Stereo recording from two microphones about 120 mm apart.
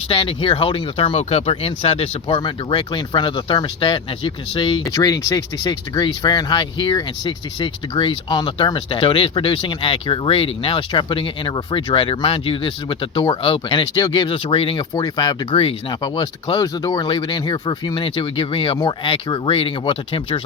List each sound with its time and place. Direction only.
0.1 s speech: 45° left (ahead or behind)